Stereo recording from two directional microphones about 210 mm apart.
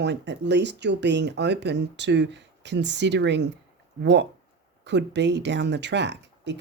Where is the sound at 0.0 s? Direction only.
55° right (ahead or behind).